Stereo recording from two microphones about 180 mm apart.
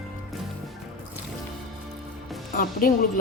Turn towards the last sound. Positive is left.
turn(degrees=50)  # may be behind; listen again after turning